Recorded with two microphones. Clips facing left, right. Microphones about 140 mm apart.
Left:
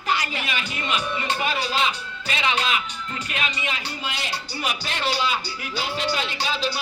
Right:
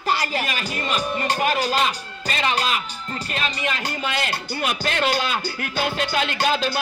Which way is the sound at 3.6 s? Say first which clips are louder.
Right 4 dB; 55° right (ahead or behind).